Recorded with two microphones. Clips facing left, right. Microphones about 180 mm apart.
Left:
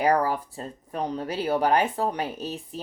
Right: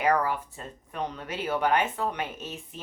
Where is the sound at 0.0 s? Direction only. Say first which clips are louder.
Left 3 dB; 35° left (ahead or behind).